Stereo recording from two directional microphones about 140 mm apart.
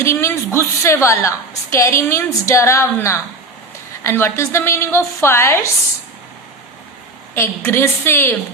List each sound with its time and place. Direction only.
0.0 s a woman's voice: 20° left (ahead or behind)
7.3 s a woman's voice: 20° left (ahead or behind)